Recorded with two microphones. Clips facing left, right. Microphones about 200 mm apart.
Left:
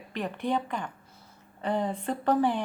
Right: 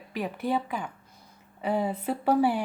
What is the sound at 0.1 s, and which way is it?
Speech, 5° right (ahead or behind).